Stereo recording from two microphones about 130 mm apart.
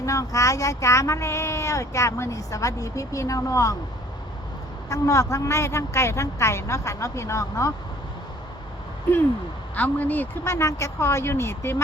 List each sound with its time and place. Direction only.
0.0 s speech: 25° left (ahead or behind)
4.9 s speech: 25° left (ahead or behind)
9.7 s speech: 15° left (ahead or behind)